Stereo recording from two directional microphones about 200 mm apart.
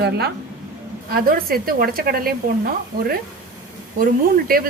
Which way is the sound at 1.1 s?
45° right (ahead or behind).